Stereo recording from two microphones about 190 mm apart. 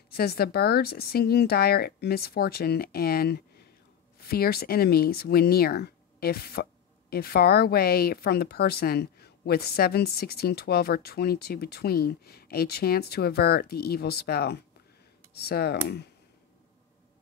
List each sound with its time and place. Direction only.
0.1 s speech: 55° left (ahead or behind)